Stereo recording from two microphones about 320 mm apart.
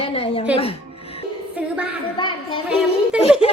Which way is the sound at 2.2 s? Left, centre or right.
Centre.